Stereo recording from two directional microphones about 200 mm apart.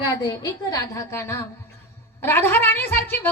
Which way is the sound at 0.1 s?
15° left (ahead or behind).